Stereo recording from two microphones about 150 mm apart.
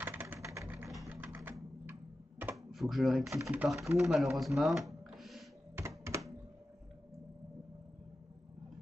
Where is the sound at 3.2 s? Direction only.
20° right (ahead or behind).